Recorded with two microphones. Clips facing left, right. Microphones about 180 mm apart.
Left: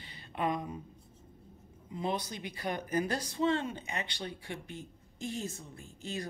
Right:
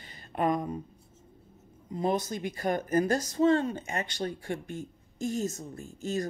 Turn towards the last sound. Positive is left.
turn(degrees=-45)  # may be behind; listen again after turning